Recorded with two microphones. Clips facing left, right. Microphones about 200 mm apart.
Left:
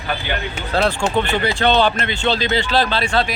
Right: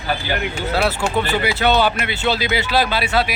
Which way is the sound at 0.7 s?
10° right (ahead or behind).